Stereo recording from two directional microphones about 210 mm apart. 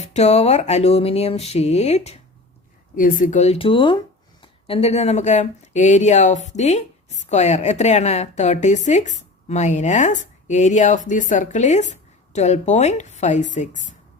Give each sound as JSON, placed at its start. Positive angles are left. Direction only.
{"t": 0.0, "sound": "speech", "side_deg": 30}